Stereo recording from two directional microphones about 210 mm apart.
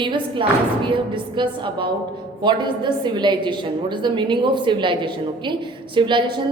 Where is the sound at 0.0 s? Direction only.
25° right (ahead or behind).